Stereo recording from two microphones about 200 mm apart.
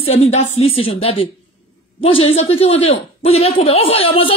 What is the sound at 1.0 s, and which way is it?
A woman's voice, 30° left (ahead or behind).